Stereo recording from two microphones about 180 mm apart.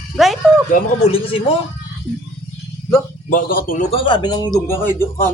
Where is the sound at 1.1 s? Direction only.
30° left (ahead or behind).